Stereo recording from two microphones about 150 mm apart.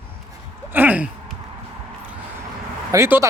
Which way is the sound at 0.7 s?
10° right (ahead or behind).